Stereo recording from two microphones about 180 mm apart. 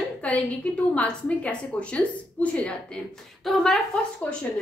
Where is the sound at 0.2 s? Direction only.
10° left (ahead or behind).